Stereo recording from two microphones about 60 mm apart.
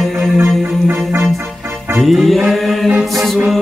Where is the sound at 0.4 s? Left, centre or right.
Right.